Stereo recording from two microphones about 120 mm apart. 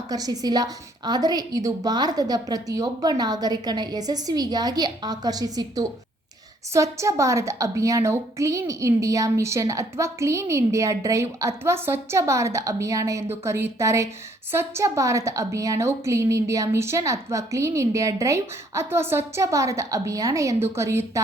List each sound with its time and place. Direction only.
0.1 s a woman's voice: 30° right (ahead or behind)